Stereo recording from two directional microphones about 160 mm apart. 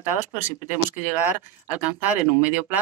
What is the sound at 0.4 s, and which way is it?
Speech, 10° right (ahead or behind).